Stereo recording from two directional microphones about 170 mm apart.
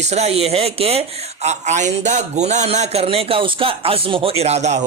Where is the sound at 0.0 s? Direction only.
40° right (ahead or behind).